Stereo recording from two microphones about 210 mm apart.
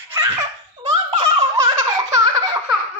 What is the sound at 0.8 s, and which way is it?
Baby laughter, 35° right (ahead or behind).